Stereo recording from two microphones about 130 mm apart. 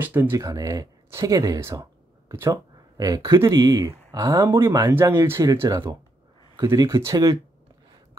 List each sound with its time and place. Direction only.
0.0 s speech: 15° right (ahead or behind)